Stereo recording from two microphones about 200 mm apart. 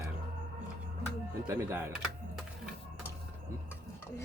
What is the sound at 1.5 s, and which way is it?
Speech, 10° right (ahead or behind).